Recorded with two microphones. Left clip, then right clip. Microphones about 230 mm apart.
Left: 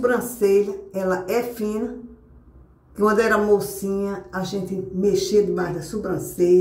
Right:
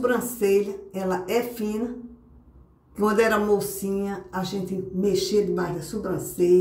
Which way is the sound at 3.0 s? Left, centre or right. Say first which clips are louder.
Left 3 dB; centre.